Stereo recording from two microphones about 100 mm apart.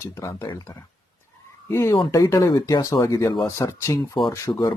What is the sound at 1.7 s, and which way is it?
Speech, 25° left (ahead or behind).